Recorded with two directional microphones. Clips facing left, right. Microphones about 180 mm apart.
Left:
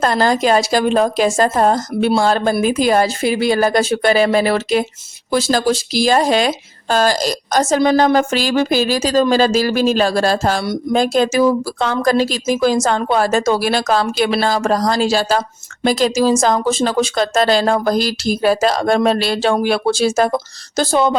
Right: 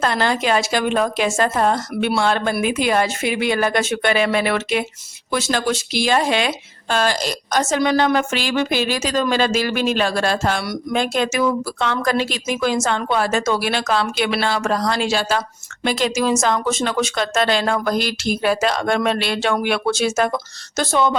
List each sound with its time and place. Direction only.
0.0 s speech: 40° left (ahead or behind)